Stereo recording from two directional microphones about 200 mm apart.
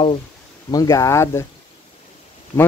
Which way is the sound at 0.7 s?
15° left (ahead or behind).